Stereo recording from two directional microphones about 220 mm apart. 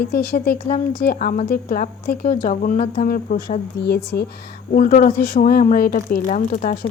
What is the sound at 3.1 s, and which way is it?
Speech, 40° left (ahead or behind).